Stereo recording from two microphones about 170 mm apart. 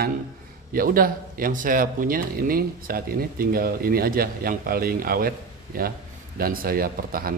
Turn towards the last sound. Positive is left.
turn(degrees=-60)  # may be behind; listen again after turning